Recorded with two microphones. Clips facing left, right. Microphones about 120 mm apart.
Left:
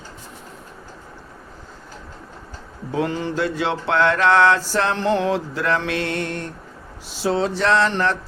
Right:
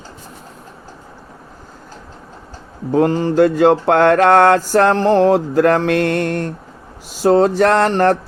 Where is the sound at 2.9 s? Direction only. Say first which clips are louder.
Right 9 dB; 45° right (ahead or behind).